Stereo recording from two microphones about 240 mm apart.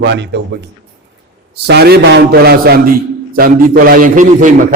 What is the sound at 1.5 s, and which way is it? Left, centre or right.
A man's voice, right.